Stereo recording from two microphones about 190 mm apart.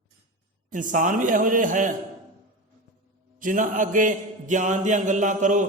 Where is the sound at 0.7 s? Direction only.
45° right (ahead or behind).